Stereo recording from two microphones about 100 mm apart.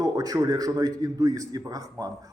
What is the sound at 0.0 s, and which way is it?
A man's voice, 35° right (ahead or behind).